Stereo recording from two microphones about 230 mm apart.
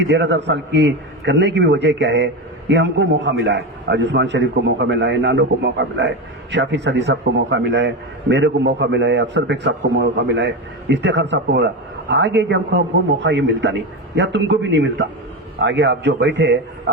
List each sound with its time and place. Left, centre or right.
0.1 s a man's voice: right